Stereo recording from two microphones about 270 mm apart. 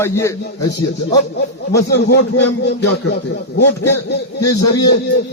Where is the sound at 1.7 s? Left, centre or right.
Left.